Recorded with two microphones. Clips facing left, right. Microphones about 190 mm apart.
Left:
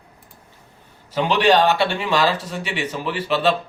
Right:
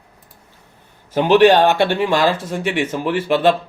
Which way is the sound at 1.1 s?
50° right (ahead or behind).